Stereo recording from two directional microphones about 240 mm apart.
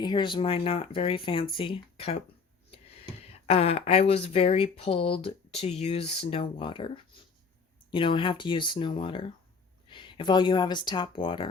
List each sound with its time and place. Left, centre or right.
0.0 s speech: centre
3.4 s speech: left